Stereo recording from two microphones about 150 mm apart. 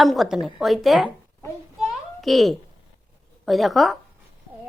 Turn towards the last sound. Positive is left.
turn(degrees=0)  # may be behind; listen again after turning